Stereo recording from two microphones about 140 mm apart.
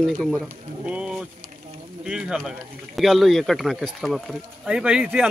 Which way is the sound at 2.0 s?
5° right (ahead or behind).